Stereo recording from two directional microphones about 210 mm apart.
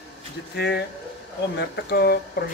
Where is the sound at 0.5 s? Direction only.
50° left (ahead or behind).